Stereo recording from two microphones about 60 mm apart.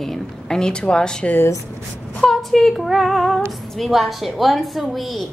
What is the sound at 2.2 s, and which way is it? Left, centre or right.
Female singing, centre.